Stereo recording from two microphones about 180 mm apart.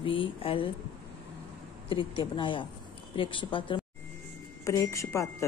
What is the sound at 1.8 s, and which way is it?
Speech, 30° left (ahead or behind).